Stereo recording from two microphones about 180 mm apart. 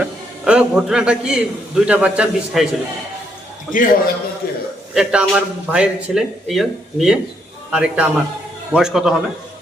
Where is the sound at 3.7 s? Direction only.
50° left (ahead or behind).